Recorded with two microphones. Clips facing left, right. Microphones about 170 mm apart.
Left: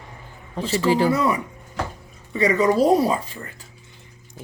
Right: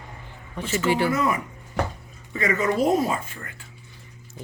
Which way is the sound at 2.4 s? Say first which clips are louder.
Left 5 dB; 35° left (ahead or behind).